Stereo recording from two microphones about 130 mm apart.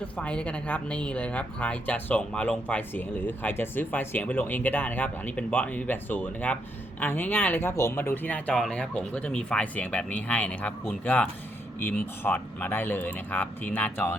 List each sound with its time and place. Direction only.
0.2 s speech: 10° left (ahead or behind)